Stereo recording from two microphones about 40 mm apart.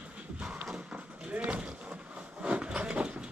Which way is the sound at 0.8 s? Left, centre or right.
Right.